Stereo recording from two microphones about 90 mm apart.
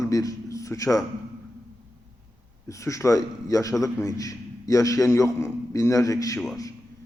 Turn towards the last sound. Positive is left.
turn(degrees=40)  # may be behind; listen again after turning